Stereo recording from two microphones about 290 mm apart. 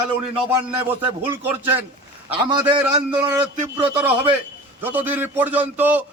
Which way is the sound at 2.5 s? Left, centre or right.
Centre.